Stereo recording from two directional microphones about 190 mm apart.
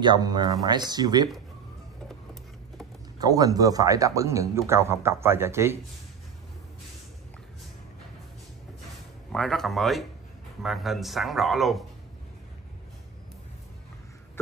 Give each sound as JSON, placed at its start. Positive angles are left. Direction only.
{"t": 0.0, "sound": "speech", "side_deg": -25}
{"t": 3.2, "sound": "a man's voice", "side_deg": -20}
{"t": 9.3, "sound": "speech", "side_deg": 0}